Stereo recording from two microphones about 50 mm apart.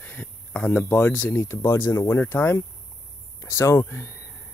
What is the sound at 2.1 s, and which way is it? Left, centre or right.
Speech, left.